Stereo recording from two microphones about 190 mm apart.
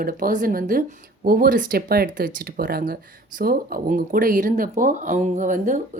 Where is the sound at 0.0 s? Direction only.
50° right (ahead or behind).